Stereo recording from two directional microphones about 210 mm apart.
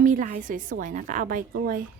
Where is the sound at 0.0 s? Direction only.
40° right (ahead or behind).